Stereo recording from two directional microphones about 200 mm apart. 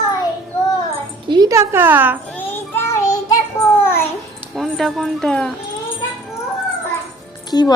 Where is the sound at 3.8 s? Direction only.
10° left (ahead or behind).